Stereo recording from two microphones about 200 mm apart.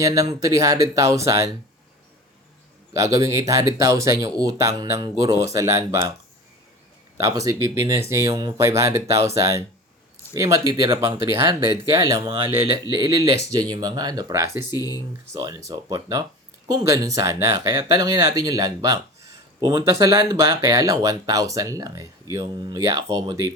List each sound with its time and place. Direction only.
0.0 s speech: 15° right (ahead or behind)
2.9 s speech: 15° right (ahead or behind)
7.2 s speech: 15° right (ahead or behind)
14.8 s speech: 20° left (ahead or behind)
15.3 s speech: 20° right (ahead or behind)